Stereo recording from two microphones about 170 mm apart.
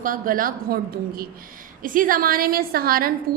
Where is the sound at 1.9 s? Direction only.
55° right (ahead or behind).